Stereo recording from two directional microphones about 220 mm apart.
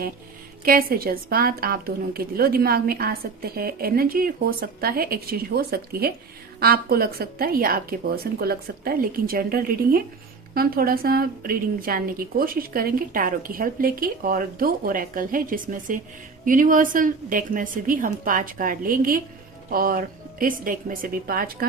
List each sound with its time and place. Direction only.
0.6 s a woman's voice: 40° right (ahead or behind)